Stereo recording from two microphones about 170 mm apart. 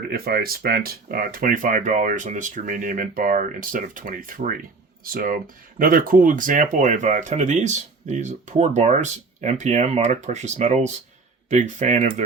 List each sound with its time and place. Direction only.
0.1 s speech: 60° right (ahead or behind); by 12.0 s 45° right (ahead or behind)